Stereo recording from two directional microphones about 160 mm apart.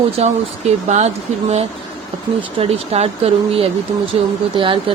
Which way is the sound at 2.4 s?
35° right (ahead or behind).